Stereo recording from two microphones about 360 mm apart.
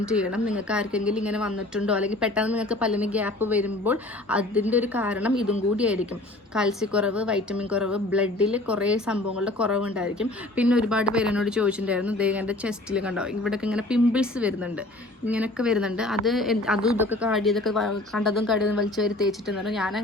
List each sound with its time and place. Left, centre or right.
0.1 s a woman's voice: centre